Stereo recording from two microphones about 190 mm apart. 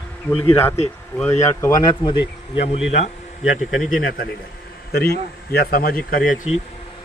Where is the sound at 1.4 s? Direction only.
20° left (ahead or behind).